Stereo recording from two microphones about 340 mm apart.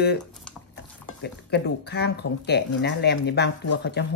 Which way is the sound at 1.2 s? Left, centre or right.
Left.